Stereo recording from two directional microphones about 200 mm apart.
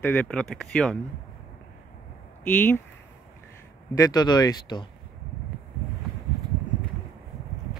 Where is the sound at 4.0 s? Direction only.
20° left (ahead or behind).